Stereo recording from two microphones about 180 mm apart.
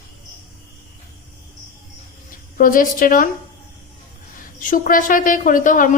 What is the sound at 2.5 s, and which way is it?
Speech, 50° left (ahead or behind).